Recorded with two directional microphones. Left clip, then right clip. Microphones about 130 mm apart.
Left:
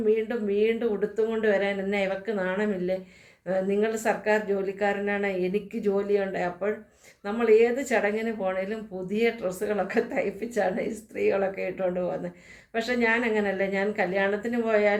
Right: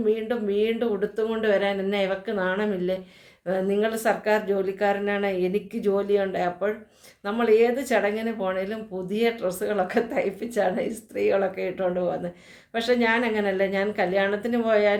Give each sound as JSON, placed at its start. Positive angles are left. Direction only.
{"t": 0.1, "sound": "speech", "side_deg": -30}